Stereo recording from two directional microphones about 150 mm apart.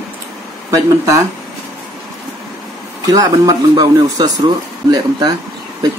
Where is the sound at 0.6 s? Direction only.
20° right (ahead or behind).